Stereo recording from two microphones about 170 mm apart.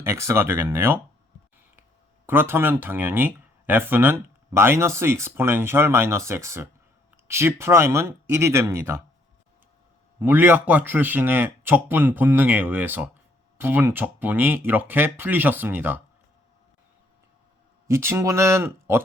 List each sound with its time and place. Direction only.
0.0 s speech: 15° right (ahead or behind)
2.2 s speech: 15° right (ahead or behind)
10.2 s speech: 10° right (ahead or behind)
17.8 s speech: 15° right (ahead or behind)